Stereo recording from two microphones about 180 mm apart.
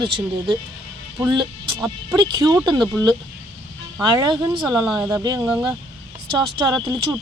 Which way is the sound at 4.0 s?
20° right (ahead or behind).